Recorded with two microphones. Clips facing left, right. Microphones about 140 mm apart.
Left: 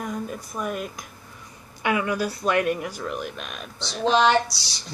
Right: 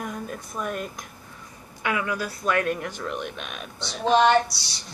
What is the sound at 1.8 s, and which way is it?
Speech, 20° left (ahead or behind).